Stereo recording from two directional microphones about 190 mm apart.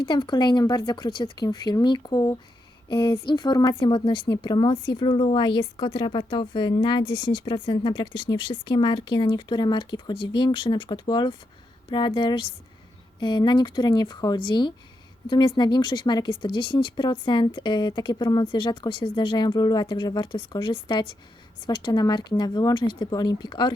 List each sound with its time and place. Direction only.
0.0 s a woman's voice: 25° left (ahead or behind)